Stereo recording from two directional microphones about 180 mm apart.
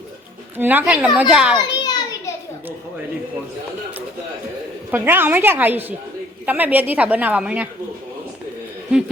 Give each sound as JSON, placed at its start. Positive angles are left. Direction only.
{"t": 0.5, "sound": "a woman's voice", "side_deg": -10}
{"t": 1.5, "sound": "children playing", "side_deg": 20}
{"t": 4.9, "sound": "a woman's voice", "side_deg": -10}